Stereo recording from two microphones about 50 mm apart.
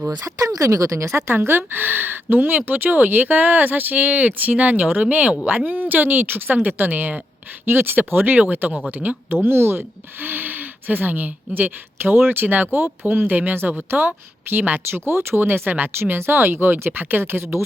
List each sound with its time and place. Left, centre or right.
0.3 s speech: right
1.3 s speech: right
9.3 s speech: right
14.8 s speech: right